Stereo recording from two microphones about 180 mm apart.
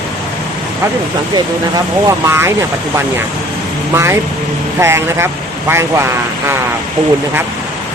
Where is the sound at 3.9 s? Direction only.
15° right (ahead or behind).